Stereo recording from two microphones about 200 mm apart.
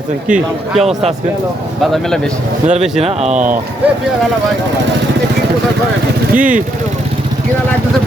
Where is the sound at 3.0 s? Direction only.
35° right (ahead or behind).